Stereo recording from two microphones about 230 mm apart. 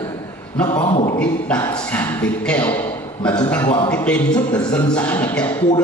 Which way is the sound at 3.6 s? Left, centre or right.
Centre.